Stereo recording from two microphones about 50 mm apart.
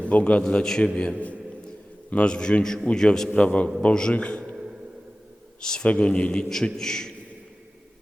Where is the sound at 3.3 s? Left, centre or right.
Left.